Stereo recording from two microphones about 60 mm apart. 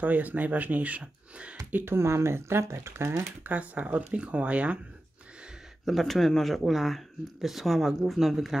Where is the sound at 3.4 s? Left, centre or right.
Right.